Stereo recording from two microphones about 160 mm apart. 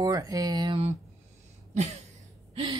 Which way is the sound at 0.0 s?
20° right (ahead or behind).